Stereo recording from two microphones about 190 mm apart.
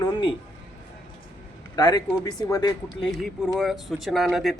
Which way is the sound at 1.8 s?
20° left (ahead or behind).